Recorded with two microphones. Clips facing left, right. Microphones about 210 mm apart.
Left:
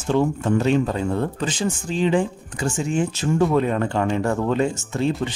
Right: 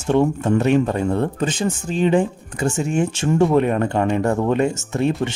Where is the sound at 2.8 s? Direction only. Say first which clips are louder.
Right 1 dB; 65° right (ahead or behind).